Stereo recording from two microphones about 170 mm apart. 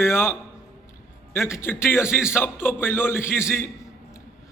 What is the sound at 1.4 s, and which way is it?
Speech, 15° left (ahead or behind).